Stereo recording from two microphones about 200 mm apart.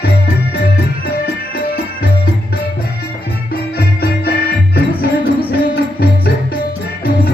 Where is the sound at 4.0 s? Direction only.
55° left (ahead or behind).